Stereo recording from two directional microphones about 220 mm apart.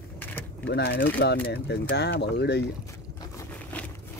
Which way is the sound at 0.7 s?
50° left (ahead or behind).